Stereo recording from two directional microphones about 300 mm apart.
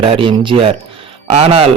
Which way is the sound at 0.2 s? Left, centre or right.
Centre.